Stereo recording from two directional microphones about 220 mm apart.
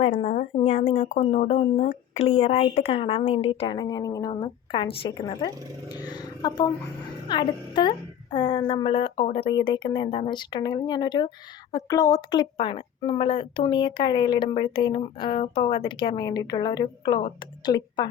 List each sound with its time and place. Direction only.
0.0 s a woman's voice: 30° left (ahead or behind)